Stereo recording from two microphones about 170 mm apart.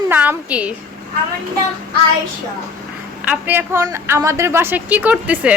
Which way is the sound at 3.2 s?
10° right (ahead or behind).